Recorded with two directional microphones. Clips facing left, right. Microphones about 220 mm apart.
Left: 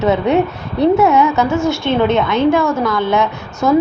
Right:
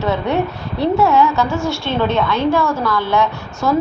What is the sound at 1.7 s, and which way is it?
A woman's voice, 20° left (ahead or behind).